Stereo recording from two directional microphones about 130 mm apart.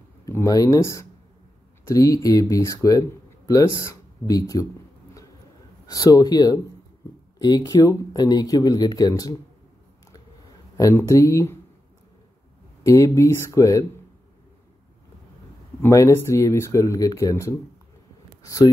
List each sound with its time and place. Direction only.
0.2 s speech: 25° left (ahead or behind)
5.9 s speech: 25° left (ahead or behind)
10.8 s speech: 25° left (ahead or behind)
12.8 s speech: 25° left (ahead or behind)
15.8 s speech: 20° left (ahead or behind)
18.4 s a sound: 25° left (ahead or behind)